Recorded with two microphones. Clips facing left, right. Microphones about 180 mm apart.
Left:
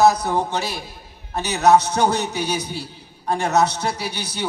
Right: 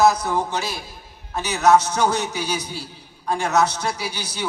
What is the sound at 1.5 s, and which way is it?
Speech, 35° left (ahead or behind).